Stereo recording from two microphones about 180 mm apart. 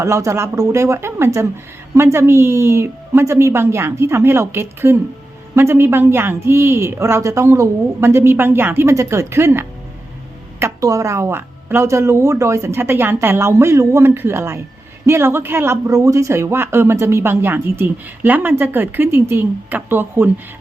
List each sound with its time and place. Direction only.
0.0 s speech: 15° right (ahead or behind)